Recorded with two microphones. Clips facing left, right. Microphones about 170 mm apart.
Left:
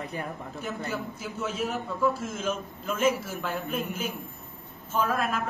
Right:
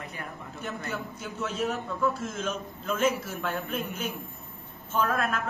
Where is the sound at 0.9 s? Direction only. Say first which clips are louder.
Left 2 dB; centre (ahead or behind).